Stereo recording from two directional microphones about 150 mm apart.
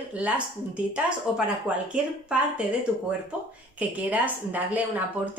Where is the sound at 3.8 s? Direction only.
10° right (ahead or behind).